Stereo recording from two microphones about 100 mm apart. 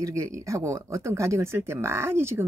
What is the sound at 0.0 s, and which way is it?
Speech, 30° right (ahead or behind).